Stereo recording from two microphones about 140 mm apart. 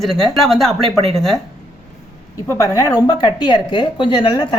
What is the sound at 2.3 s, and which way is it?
Speech, 20° left (ahead or behind).